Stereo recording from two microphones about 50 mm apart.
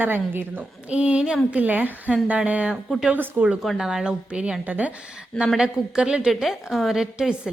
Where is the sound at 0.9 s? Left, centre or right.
Right.